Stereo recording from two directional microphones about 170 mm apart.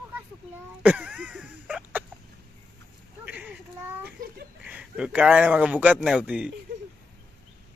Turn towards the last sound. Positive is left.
turn(degrees=-5)  # may be behind; listen again after turning